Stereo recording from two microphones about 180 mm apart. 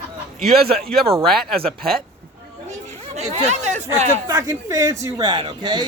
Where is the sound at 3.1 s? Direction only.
35° right (ahead or behind).